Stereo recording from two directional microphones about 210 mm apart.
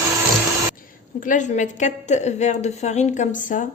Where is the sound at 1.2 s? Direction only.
35° left (ahead or behind).